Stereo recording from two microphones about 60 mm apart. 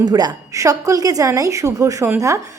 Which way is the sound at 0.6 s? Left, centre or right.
Right.